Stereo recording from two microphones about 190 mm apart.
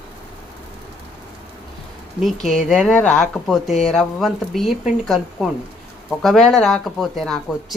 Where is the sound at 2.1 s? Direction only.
Centre (ahead or behind).